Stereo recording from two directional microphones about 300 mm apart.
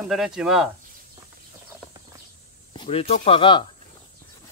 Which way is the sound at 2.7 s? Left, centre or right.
Centre.